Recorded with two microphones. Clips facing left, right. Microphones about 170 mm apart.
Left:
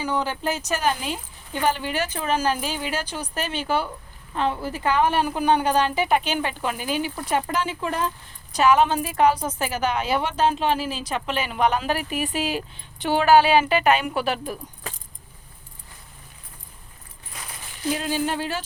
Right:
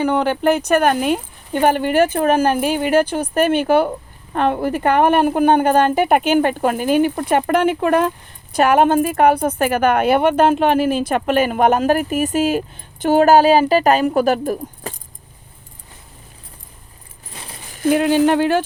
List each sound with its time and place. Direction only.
0.0 s a woman's voice: 60° right (ahead or behind); by 14.9 s 45° right (ahead or behind)
17.3 s a sound: 30° right (ahead or behind)
17.7 s speech: 55° right (ahead or behind)